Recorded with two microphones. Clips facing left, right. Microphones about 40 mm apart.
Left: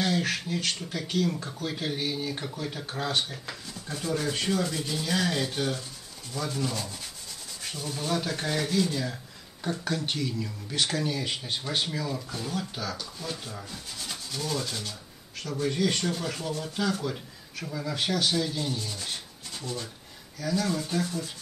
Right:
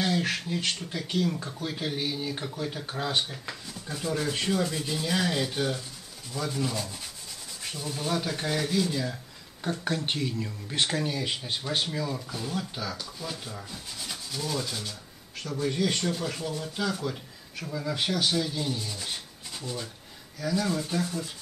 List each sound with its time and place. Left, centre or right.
0.0 s speech: centre
9.8 s speech: right
11.1 s speech: centre